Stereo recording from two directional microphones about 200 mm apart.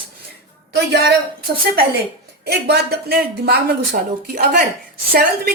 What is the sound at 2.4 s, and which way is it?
Speech, 55° right (ahead or behind).